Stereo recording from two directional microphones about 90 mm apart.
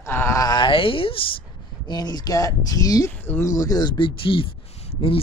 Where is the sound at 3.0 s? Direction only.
20° left (ahead or behind).